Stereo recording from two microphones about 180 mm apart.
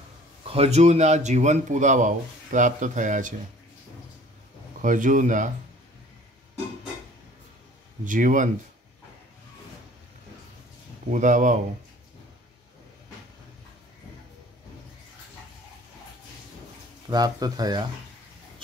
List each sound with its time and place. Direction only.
0.4 s speech: 35° right (ahead or behind)
4.8 s speech: 45° right (ahead or behind)
8.0 s speech: 45° right (ahead or behind)
11.1 s speech: 45° right (ahead or behind)
17.1 s speech: 20° right (ahead or behind)